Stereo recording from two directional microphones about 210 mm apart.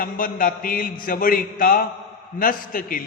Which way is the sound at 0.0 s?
40° left (ahead or behind).